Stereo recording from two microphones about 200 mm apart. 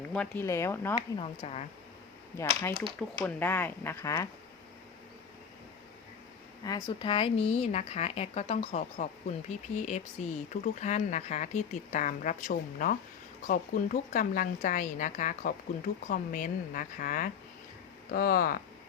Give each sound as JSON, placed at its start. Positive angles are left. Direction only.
{"t": 0.1, "sound": "speech", "side_deg": 5}
{"t": 1.4, "sound": "speech", "side_deg": 30}
{"t": 2.4, "sound": "speech", "side_deg": 15}
{"t": 6.7, "sound": "speech", "side_deg": 15}